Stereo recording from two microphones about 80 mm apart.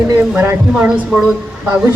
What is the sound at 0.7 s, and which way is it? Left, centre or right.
Speech, centre.